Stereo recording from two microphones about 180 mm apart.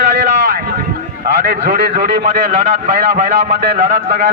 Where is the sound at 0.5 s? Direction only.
55° right (ahead or behind).